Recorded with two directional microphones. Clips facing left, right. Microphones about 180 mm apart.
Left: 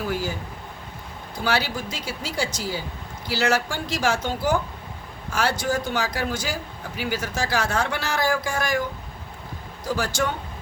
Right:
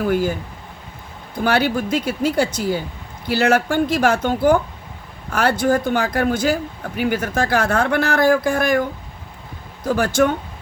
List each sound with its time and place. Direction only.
0.1 s speech: 55° right (ahead or behind)
1.5 s speech: 55° right (ahead or behind)